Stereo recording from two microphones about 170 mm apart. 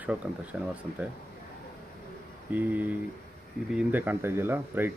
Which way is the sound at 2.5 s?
10° right (ahead or behind).